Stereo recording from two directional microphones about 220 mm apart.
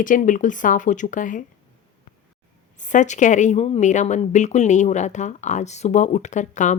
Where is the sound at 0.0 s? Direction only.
35° left (ahead or behind).